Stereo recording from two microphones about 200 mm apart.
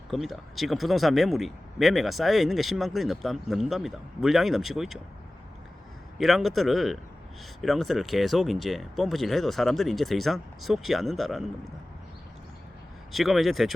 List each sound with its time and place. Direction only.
0.1 s speech: centre (ahead or behind)
6.1 s speech: centre (ahead or behind)
13.1 s speech: centre (ahead or behind)